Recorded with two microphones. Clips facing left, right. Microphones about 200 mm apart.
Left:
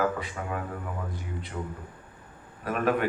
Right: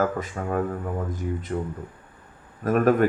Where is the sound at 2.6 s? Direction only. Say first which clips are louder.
Right 7 dB; 45° right (ahead or behind).